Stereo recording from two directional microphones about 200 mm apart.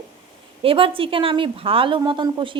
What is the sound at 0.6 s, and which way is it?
A woman's voice, 25° right (ahead or behind).